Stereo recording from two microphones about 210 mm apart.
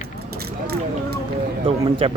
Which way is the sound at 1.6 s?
25° right (ahead or behind).